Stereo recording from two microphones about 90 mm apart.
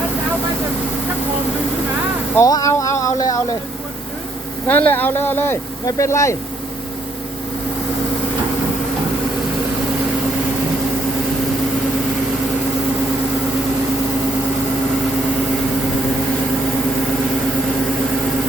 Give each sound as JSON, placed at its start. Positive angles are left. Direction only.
{"t": 2.4, "sound": "a sound", "side_deg": 40}
{"t": 4.7, "sound": "speech", "side_deg": 20}
{"t": 5.8, "sound": "speech", "side_deg": 35}